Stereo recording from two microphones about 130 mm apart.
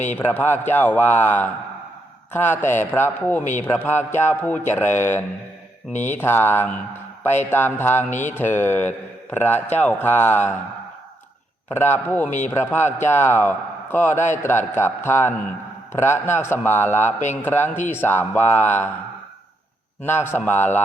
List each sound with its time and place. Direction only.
0.2 s a man's voice: 15° left (ahead or behind)
5.9 s speech: 65° left (ahead or behind)
6.1 s a man's voice: 15° left (ahead or behind)
11.7 s a man's voice: 15° left (ahead or behind)
17.1 s a man's voice: 65° left (ahead or behind)
17.4 s a man's voice: 15° left (ahead or behind)
20.1 s a man's voice: 15° left (ahead or behind)